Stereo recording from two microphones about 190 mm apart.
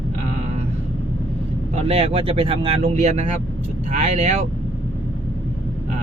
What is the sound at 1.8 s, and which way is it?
Speech, 30° right (ahead or behind).